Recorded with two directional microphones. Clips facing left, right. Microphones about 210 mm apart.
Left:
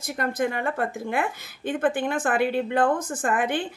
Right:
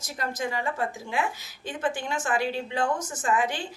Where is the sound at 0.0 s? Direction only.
55° left (ahead or behind).